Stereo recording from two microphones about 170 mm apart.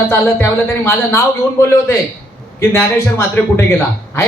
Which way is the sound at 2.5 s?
15° left (ahead or behind).